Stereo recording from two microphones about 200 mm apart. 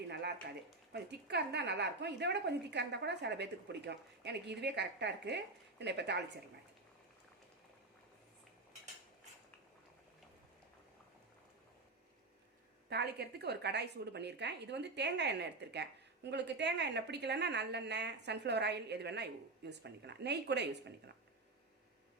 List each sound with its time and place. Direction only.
0.1 s a sound: 55° right (ahead or behind)
0.9 s a woman's voice: 55° right (ahead or behind)
12.9 s a woman's voice: 55° right (ahead or behind)